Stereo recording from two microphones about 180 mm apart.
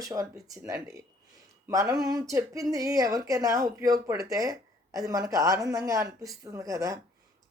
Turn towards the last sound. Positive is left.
turn(degrees=-20)  # may be behind; listen again after turning